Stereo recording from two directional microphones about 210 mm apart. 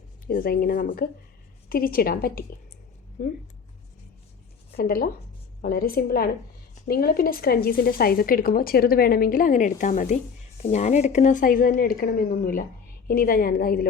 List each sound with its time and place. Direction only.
0.3 s a woman's voice: 45° left (ahead or behind)
4.8 s a woman's voice: 45° left (ahead or behind)